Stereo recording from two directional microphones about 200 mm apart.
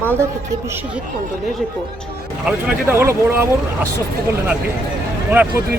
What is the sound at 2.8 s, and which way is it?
Speech, 10° right (ahead or behind).